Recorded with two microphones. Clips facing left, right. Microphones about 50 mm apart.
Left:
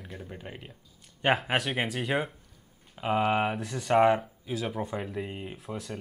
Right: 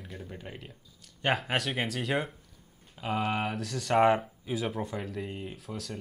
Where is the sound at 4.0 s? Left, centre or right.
Centre.